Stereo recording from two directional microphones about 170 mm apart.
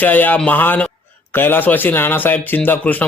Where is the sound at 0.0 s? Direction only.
10° left (ahead or behind).